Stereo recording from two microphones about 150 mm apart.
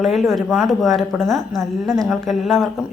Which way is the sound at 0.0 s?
Centre (ahead or behind).